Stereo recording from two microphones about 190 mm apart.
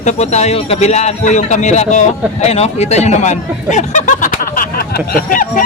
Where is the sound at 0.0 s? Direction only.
35° left (ahead or behind).